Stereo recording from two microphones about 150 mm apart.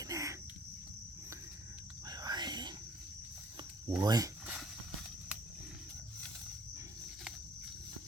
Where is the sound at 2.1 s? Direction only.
25° right (ahead or behind).